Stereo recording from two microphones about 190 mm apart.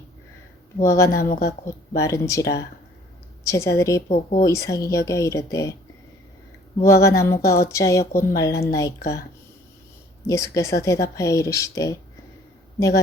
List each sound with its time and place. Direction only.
0.8 s speech: 15° left (ahead or behind)
1.2 s a woman's voice: 55° left (ahead or behind)
1.6 s speech: 15° left (ahead or behind)
4.1 s speech: 40° left (ahead or behind)
4.4 s speech: 15° left (ahead or behind)
6.8 s speech: 15° left (ahead or behind)
10.2 s speech: 15° left (ahead or behind)